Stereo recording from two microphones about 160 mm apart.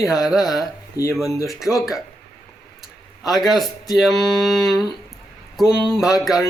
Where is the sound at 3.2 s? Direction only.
Centre (ahead or behind).